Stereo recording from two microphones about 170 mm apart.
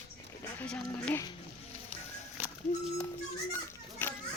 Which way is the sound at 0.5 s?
10° left (ahead or behind).